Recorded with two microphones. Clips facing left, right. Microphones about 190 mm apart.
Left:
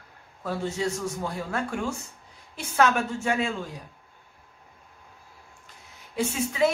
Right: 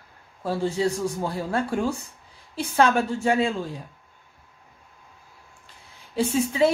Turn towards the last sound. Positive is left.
turn(degrees=-30)  # may be behind; listen again after turning